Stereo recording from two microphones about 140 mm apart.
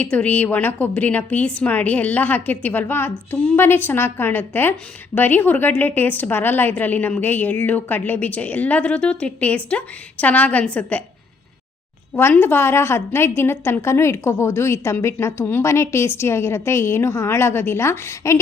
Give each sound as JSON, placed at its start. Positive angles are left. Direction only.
{"t": 0.0, "sound": "a woman's voice", "side_deg": 10}
{"t": 12.1, "sound": "a woman's voice", "side_deg": 15}